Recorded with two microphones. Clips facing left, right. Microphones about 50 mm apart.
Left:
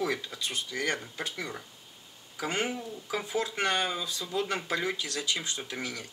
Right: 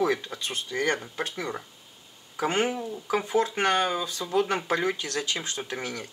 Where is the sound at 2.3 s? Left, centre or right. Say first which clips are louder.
Right 6 dB; right.